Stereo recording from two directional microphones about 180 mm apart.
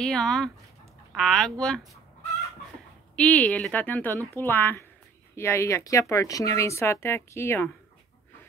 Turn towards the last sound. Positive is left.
turn(degrees=15)  # may be behind; listen again after turning